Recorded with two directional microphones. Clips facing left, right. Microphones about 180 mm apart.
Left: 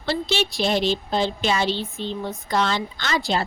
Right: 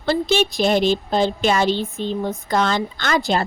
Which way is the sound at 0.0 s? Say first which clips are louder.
Right 5 dB; 50° right (ahead or behind).